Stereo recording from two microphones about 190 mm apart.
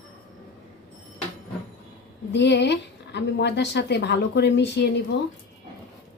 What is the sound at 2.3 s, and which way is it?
Speech, 65° left (ahead or behind).